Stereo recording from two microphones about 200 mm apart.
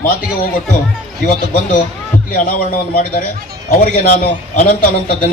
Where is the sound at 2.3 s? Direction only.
40° left (ahead or behind).